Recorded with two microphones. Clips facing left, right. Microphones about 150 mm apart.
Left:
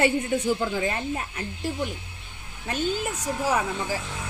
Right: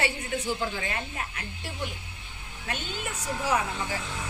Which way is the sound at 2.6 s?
40° left (ahead or behind).